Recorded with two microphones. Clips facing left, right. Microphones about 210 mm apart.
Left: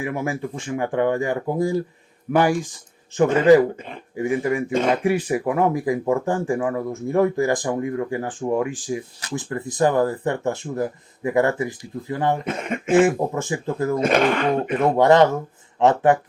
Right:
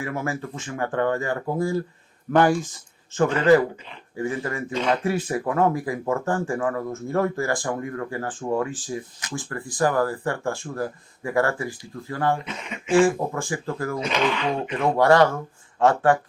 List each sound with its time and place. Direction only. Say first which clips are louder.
0.0 s speech: left 3 dB; 15° left (ahead or behind)
4.7 s speech: left 2 dB; 50° left (ahead or behind)
5.0 s speech: left 4 dB; 10° left (ahead or behind)
12.5 s speech: left 9 dB; 50° left (ahead or behind)
12.9 s speech: left 2 dB; 20° left (ahead or behind)
14.0 s speech: left 6 dB; 50° left (ahead or behind)
14.8 s speech: left 2 dB; 20° left (ahead or behind)